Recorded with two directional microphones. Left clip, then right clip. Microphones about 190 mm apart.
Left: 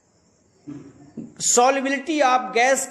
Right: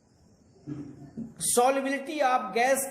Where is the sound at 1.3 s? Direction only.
15° left (ahead or behind).